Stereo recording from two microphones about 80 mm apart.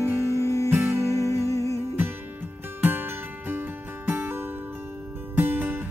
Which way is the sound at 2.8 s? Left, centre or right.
Right.